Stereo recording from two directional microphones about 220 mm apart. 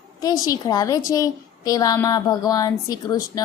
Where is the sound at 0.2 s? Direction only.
15° left (ahead or behind).